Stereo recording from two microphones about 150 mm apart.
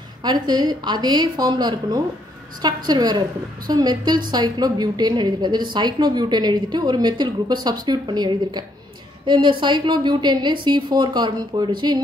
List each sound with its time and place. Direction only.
0.2 s a woman's voice: 30° right (ahead or behind)